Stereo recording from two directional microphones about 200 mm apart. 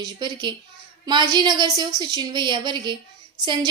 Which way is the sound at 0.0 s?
20° right (ahead or behind).